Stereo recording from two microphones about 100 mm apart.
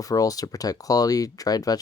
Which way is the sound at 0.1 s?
35° left (ahead or behind).